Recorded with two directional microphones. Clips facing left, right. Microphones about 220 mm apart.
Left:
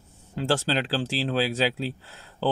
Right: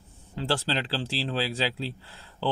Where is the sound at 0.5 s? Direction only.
45° left (ahead or behind).